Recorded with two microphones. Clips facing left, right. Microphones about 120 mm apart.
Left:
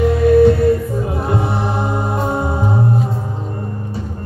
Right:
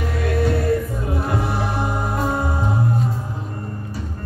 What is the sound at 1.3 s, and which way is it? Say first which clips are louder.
Music: left 5 dB; 25° left (ahead or behind).